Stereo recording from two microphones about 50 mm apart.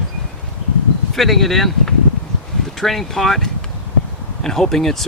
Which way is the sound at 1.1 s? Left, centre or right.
Centre.